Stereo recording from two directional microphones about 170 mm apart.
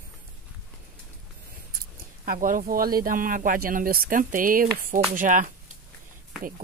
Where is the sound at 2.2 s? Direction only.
55° right (ahead or behind).